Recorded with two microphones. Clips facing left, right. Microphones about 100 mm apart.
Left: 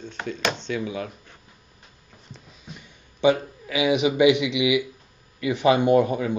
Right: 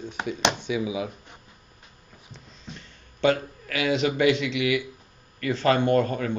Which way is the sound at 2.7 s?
15° left (ahead or behind).